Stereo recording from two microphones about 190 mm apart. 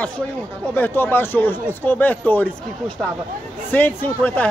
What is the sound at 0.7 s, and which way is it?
Speech, 10° left (ahead or behind).